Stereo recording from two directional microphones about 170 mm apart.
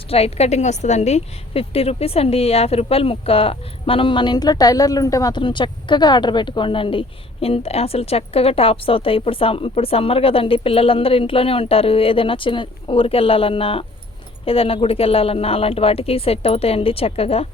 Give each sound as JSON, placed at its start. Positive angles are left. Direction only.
{"t": 0.1, "sound": "a woman's voice", "side_deg": 35}